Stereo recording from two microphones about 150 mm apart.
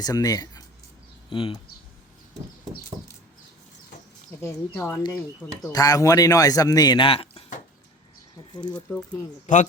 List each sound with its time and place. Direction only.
0.0 s speech: 25° left (ahead or behind)
1.3 s speech: 35° left (ahead or behind)
4.4 s speech: 15° left (ahead or behind); by 7.4 s 40° left (ahead or behind)
8.5 s speech: 30° left (ahead or behind)
9.5 s a man's voice: 55° left (ahead or behind)